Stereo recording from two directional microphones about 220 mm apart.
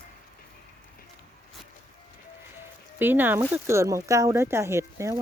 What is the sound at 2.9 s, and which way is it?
Speech, 10° right (ahead or behind).